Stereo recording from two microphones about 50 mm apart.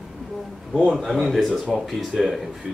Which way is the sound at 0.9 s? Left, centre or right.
Centre.